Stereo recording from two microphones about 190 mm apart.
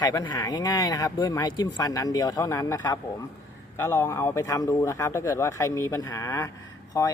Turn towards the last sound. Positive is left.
turn(degrees=15)  # may be behind; listen again after turning